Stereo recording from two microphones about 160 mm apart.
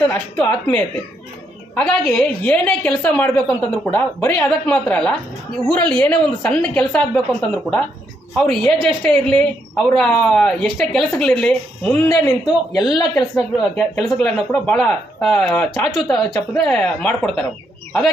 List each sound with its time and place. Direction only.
0.0 s a woman's voice: 10° left (ahead or behind)
12.0 s speech: 25° left (ahead or behind)
13.3 s speech: 5° left (ahead or behind)